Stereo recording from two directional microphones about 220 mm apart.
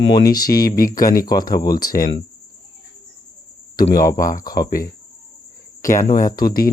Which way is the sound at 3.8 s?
40° left (ahead or behind).